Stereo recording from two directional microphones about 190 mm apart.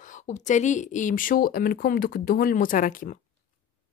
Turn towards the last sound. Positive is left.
turn(degrees=45)  # may be behind; listen again after turning